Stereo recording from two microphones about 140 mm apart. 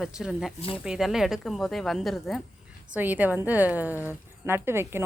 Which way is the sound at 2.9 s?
10° right (ahead or behind).